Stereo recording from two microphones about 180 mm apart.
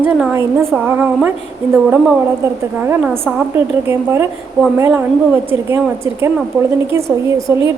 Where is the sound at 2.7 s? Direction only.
10° right (ahead or behind).